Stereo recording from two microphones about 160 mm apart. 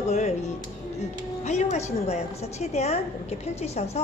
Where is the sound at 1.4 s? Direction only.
45° left (ahead or behind).